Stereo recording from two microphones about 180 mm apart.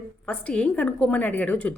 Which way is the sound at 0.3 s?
5° left (ahead or behind).